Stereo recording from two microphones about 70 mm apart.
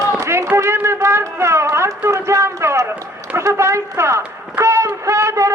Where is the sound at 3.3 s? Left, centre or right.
Right.